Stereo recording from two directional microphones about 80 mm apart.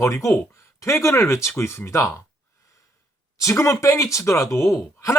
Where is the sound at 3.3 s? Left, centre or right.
Left.